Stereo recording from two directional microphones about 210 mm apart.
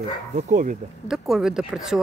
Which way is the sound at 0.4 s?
35° right (ahead or behind).